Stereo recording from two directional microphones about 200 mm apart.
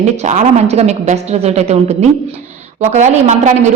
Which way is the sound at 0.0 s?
35° right (ahead or behind).